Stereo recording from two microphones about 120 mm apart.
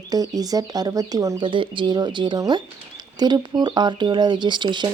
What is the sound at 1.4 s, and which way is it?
Speech, 45° right (ahead or behind).